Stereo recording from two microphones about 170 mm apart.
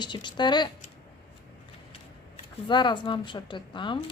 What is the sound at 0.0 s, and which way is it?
Speech, 25° left (ahead or behind).